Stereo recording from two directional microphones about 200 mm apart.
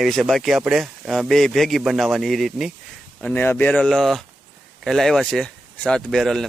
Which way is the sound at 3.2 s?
10° left (ahead or behind).